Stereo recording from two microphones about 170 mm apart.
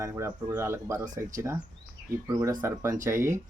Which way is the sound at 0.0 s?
15° right (ahead or behind).